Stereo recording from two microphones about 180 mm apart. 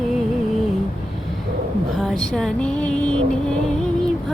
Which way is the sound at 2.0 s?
5° left (ahead or behind).